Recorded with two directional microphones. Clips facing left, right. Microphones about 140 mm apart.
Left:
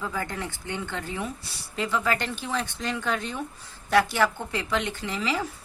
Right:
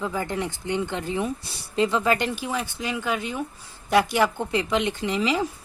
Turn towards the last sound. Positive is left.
turn(degrees=-20)  # may be behind; listen again after turning